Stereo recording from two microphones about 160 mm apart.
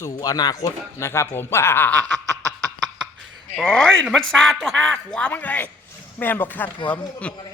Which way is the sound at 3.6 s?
5° left (ahead or behind).